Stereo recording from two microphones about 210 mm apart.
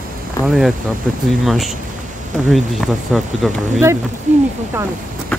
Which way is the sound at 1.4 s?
Centre (ahead or behind).